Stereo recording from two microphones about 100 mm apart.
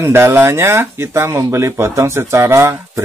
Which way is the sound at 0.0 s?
25° right (ahead or behind).